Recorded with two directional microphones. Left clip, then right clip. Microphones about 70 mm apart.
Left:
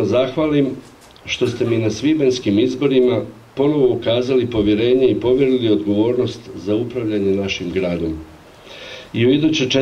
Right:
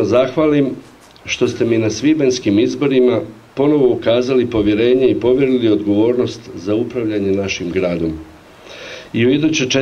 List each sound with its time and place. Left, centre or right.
0.0 s a man's voice: right